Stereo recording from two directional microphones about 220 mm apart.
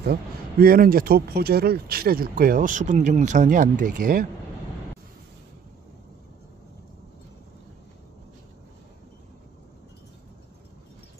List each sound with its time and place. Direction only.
0.0 s speech: 45° right (ahead or behind)